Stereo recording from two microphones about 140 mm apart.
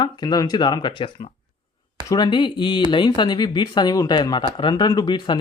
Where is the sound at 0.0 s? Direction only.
30° left (ahead or behind).